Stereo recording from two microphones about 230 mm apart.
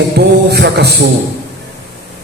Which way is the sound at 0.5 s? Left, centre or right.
Right.